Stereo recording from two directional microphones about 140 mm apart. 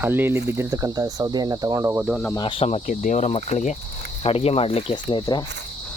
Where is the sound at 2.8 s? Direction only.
60° left (ahead or behind).